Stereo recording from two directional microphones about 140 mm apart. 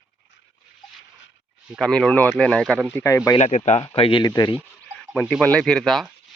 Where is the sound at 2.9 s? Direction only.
20° left (ahead or behind).